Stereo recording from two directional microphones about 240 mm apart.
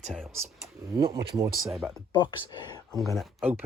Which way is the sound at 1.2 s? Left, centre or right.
Centre.